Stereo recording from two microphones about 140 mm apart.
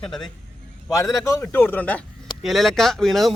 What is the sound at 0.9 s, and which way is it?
Speech, 25° left (ahead or behind).